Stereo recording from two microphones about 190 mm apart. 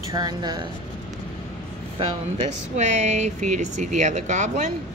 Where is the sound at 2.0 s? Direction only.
35° right (ahead or behind).